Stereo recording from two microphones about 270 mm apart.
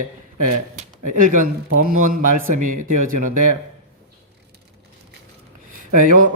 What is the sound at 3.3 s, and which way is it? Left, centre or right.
Speech, right.